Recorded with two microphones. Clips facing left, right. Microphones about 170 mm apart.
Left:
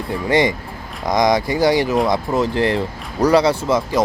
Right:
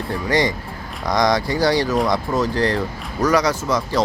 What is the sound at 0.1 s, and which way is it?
Speech, 20° left (ahead or behind).